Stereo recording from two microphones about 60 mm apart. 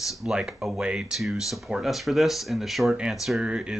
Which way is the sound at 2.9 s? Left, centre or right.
Centre.